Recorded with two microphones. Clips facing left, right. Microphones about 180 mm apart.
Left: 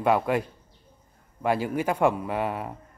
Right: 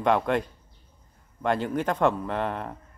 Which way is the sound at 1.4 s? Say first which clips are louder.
Left 1 dB; 5° left (ahead or behind).